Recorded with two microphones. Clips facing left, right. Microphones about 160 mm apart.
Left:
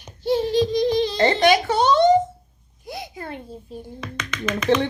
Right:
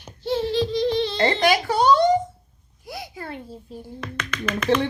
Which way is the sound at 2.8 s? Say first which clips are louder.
Left 2 dB; 20° left (ahead or behind).